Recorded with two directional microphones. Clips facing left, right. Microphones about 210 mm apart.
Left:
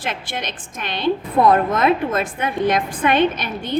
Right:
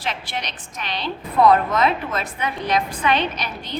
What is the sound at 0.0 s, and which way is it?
A woman's voice, 50° left (ahead or behind).